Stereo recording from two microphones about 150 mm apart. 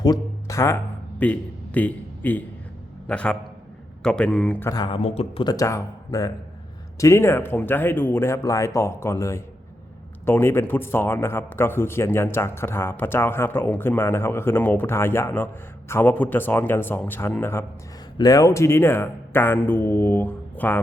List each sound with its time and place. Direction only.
0.0 s music: 25° left (ahead or behind)
1.2 s a man's voice: 10° left (ahead or behind)
4.7 s speech: 25° left (ahead or behind)
4.9 s speech: 40° left (ahead or behind)
5.5 s a man's voice: 20° left (ahead or behind)